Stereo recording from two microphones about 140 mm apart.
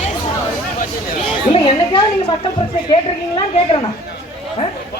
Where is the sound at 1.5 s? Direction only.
35° left (ahead or behind).